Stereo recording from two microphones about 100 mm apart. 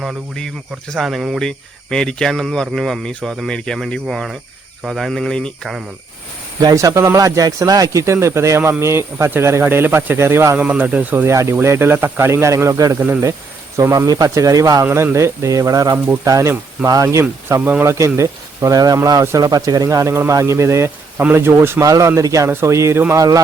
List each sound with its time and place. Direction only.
0.9 s speech: centre (ahead or behind)
6.6 s speech: 40° right (ahead or behind)
10.6 s speech: 10° right (ahead or behind); by 17.6 s 30° right (ahead or behind)
17.6 s speech: 15° right (ahead or behind)
17.8 s speech: 30° right (ahead or behind)
21.8 s speech: 35° right (ahead or behind)